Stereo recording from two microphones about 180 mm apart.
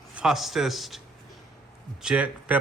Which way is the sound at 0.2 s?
Centre (ahead or behind).